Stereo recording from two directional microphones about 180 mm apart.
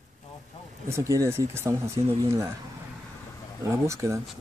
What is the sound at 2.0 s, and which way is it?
Speech, 30° right (ahead or behind).